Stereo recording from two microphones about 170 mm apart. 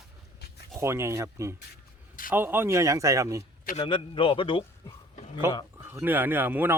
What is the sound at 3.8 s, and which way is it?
A man's voice, 30° left (ahead or behind).